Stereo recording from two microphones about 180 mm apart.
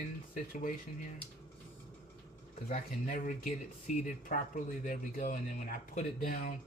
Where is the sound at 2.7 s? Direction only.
45° left (ahead or behind).